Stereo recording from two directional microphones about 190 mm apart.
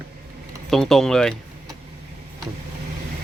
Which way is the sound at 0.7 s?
Centre (ahead or behind).